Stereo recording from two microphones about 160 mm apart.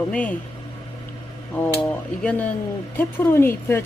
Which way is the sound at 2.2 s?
10° left (ahead or behind).